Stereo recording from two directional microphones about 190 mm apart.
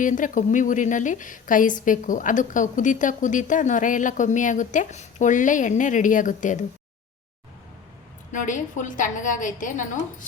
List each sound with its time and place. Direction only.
0.0 s a woman's voice: 45° left (ahead or behind)
8.3 s a woman's voice: 40° left (ahead or behind)